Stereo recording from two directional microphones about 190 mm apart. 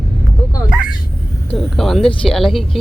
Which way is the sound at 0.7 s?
5° right (ahead or behind).